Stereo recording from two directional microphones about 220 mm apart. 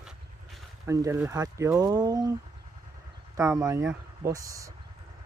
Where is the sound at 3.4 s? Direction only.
15° right (ahead or behind).